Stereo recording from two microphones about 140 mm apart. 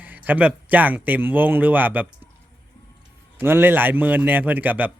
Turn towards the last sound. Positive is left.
turn(degrees=-10)  # may be behind; listen again after turning